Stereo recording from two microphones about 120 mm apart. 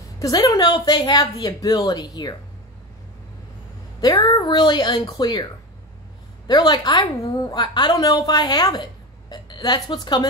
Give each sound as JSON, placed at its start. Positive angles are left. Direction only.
{"t": 0.0, "sound": "a sound", "side_deg": 30}
{"t": 0.5, "sound": "a woman's voice", "side_deg": 35}
{"t": 4.0, "sound": "a woman's voice", "side_deg": 35}